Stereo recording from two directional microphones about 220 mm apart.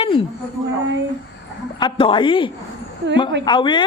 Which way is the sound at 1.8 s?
20° left (ahead or behind).